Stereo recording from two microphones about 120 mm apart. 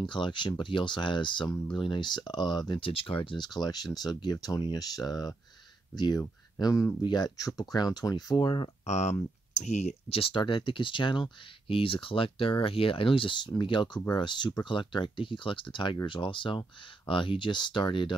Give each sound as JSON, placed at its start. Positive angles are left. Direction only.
{"t": 0.0, "sound": "speech", "side_deg": 40}
{"t": 2.7, "sound": "speech", "side_deg": 50}
{"t": 8.8, "sound": "speech", "side_deg": 65}